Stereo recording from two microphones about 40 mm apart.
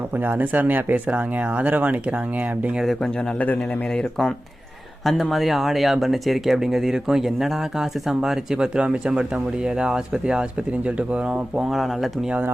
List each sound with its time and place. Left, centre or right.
0.2 s speech: right
1.0 s speech: right
3.3 s speech: left
5.0 s speech: centre; by 11.6 s right
11.6 s speech: centre